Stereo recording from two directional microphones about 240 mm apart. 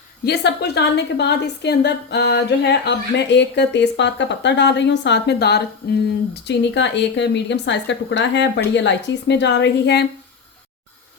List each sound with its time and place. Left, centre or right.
0.3 s a woman's voice: left